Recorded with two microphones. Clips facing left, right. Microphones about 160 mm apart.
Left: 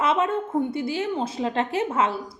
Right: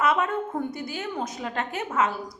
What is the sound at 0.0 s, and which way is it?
A woman's voice, 25° left (ahead or behind).